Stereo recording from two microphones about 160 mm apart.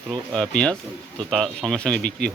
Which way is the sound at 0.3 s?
5° left (ahead or behind).